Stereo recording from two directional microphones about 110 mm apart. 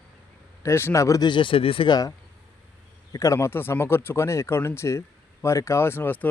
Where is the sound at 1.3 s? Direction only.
50° left (ahead or behind).